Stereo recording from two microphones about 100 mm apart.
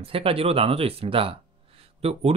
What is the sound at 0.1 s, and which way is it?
Speech, 70° right (ahead or behind).